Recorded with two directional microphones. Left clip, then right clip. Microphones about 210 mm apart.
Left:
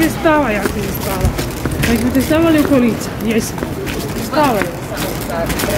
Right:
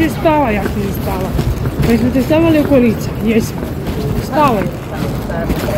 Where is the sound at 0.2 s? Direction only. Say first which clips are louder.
Right 1 dB; 10° right (ahead or behind).